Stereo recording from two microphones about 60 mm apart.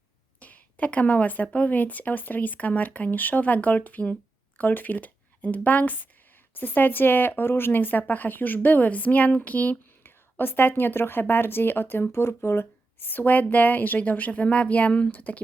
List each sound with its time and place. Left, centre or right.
0.3 s a woman's voice: left